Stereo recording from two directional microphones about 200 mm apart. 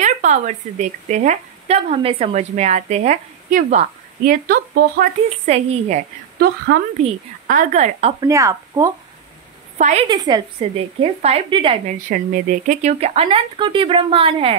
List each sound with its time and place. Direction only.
0.0 s speech: 35° right (ahead or behind)
5.3 s speech: 30° right (ahead or behind)
7.4 s speech: 35° right (ahead or behind)
8.2 s speech: 15° right (ahead or behind)
9.8 s a woman's voice: 35° right (ahead or behind)
10.0 s speech: 20° right (ahead or behind)
10.6 s speech: 30° right (ahead or behind)
12.1 s speech: 45° right (ahead or behind); by 14.6 s 30° right (ahead or behind)